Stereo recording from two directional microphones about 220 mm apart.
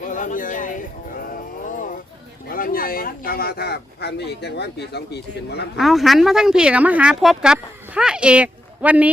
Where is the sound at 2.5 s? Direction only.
40° left (ahead or behind).